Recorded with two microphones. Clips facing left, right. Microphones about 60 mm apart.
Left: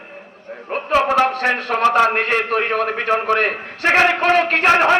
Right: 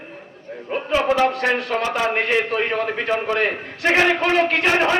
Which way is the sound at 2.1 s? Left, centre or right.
Left.